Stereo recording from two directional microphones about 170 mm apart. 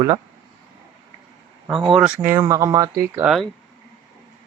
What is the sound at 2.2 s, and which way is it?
Speech, 15° right (ahead or behind).